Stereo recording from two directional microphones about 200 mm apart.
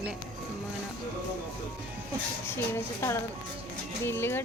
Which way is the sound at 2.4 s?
10° left (ahead or behind).